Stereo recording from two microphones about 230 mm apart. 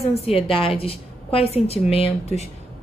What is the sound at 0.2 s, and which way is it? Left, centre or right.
A woman's voice, left.